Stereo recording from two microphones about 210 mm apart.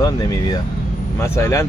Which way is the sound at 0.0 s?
15° left (ahead or behind).